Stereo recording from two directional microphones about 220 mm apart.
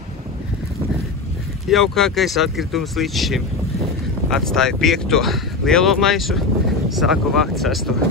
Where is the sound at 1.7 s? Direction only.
Centre (ahead or behind).